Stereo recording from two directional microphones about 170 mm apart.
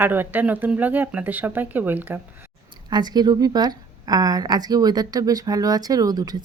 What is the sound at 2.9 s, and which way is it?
A woman's voice, 25° right (ahead or behind).